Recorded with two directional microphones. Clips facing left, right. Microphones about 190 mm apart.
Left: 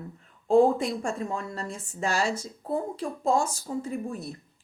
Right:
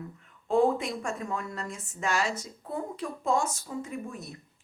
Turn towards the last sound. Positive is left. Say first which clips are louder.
# left 5 dB
turn(degrees=35)  # may be behind; listen again after turning